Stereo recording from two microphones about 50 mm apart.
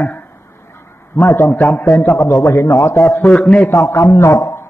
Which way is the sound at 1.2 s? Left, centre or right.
Left.